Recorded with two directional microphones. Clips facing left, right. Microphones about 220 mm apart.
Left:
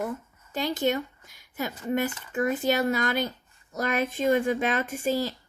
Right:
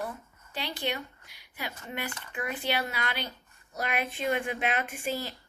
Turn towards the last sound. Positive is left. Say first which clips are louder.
# left 7 dB
turn(degrees=40)  # may be behind; listen again after turning